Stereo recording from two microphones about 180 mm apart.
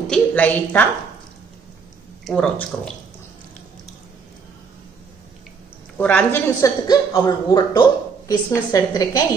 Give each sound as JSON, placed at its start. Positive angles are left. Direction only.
{"t": 0.1, "sound": "a woman's voice", "side_deg": 10}
{"t": 2.2, "sound": "speech", "side_deg": 5}
{"t": 5.9, "sound": "a woman's voice", "side_deg": 10}
{"t": 6.9, "sound": "a man's voice", "side_deg": 20}